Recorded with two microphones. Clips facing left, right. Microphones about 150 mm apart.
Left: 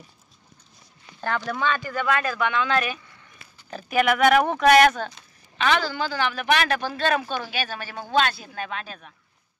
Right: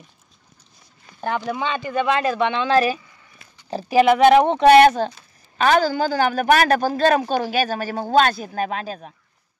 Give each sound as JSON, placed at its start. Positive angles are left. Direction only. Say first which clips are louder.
{"t": 1.2, "sound": "speech", "louder": "right 2 dB", "side_deg": -15}
{"t": 5.6, "sound": "a woman's voice", "louder": "right 6 dB", "side_deg": -45}